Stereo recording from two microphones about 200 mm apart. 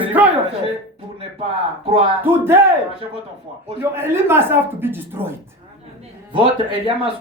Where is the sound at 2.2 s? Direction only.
10° right (ahead or behind).